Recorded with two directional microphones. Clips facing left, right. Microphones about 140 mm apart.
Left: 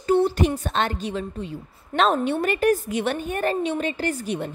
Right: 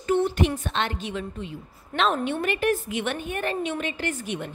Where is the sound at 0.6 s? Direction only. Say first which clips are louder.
Left 3 dB; 40° left (ahead or behind).